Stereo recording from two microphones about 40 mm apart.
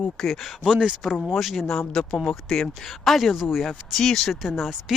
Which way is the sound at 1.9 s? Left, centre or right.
Centre.